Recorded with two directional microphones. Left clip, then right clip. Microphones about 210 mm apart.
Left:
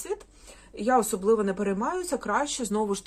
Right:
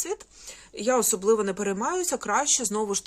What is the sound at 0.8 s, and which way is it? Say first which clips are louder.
Speech: even; 45° right (ahead or behind).